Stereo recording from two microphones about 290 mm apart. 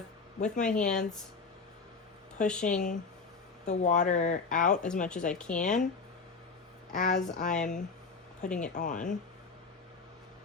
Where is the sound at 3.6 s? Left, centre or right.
Left.